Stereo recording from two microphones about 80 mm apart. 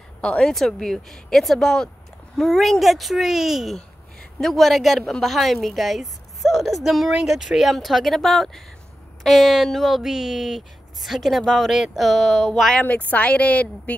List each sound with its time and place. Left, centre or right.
0.2 s a woman's voice: centre
12.8 s speech: centre